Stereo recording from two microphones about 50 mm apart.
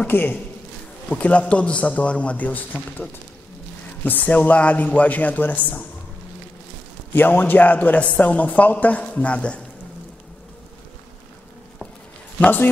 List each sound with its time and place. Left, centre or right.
0.0 s a man's voice: left
1.1 s a man's voice: left
7.2 s a man's voice: left